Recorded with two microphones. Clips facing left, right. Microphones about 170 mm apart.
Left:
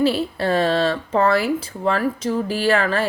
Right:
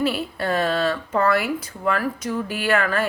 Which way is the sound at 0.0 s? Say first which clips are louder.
Left 4 dB; 30° left (ahead or behind).